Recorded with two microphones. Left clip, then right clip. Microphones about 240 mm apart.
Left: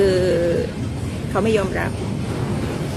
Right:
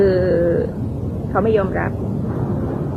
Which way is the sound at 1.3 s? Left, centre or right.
Centre.